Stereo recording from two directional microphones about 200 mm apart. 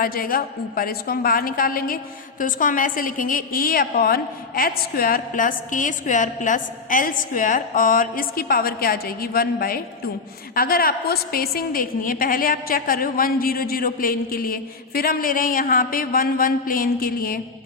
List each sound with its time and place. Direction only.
0.0 s a woman's voice: 45° left (ahead or behind)